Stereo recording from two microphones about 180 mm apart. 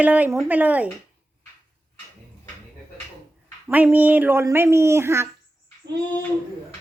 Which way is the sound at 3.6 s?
10° right (ahead or behind).